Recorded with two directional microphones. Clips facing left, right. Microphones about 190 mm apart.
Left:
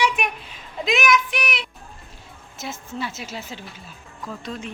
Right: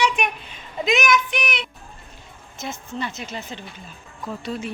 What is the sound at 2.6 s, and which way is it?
A woman's voice, 5° left (ahead or behind).